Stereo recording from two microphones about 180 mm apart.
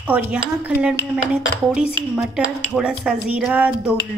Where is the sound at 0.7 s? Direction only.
10° right (ahead or behind).